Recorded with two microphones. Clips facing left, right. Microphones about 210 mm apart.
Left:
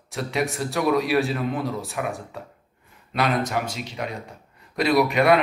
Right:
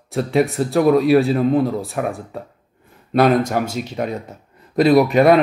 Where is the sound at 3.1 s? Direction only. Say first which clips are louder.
Right 8 dB; 50° right (ahead or behind).